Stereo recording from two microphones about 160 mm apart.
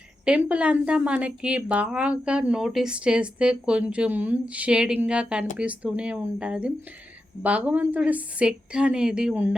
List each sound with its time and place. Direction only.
0.3 s a woman's voice: 10° right (ahead or behind)